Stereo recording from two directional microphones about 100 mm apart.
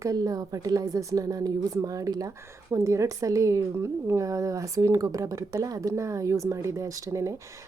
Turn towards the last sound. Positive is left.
turn(degrees=-30)  # may be behind; listen again after turning